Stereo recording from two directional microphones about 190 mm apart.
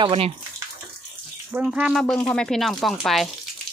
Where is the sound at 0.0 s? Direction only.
30° right (ahead or behind).